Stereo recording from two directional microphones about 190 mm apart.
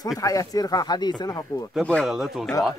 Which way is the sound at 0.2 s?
20° left (ahead or behind).